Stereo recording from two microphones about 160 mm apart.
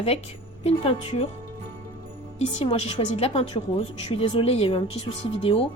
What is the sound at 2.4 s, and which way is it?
A woman's voice, 40° left (ahead or behind).